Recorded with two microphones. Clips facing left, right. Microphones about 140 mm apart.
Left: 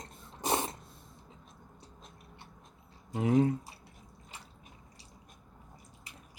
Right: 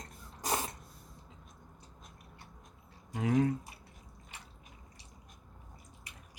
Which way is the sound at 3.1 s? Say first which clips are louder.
Left 3 dB; 25° left (ahead or behind).